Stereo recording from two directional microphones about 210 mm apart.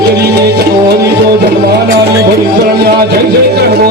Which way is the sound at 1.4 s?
50° right (ahead or behind).